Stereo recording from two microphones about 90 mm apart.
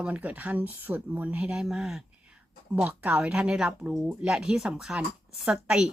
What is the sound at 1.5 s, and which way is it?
Speech, 5° right (ahead or behind).